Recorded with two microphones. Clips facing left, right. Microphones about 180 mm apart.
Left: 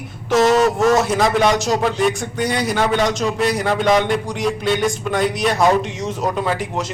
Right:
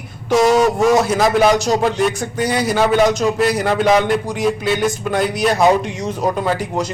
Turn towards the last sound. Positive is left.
turn(degrees=0)  # may be behind; listen again after turning